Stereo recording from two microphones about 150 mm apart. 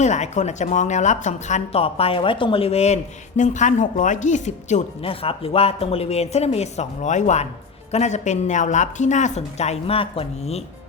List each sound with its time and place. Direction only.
0.0 s speech: 50° left (ahead or behind)
5.0 s speech: 40° left (ahead or behind)